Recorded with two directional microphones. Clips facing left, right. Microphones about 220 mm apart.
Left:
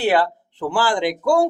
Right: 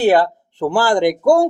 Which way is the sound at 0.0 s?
45° right (ahead or behind).